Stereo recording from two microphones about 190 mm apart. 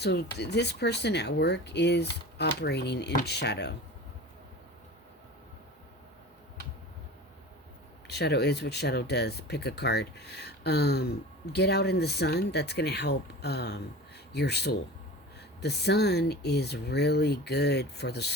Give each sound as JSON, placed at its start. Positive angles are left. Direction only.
{"t": 0.0, "sound": "speech", "side_deg": 60}
{"t": 8.0, "sound": "speech", "side_deg": 60}